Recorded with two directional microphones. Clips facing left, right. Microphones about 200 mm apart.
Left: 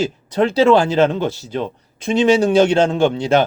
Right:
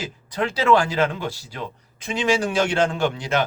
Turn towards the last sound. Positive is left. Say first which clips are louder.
# left 8 dB
turn(degrees=25)  # may be behind; listen again after turning